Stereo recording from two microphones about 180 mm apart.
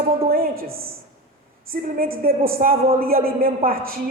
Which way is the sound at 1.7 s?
55° right (ahead or behind).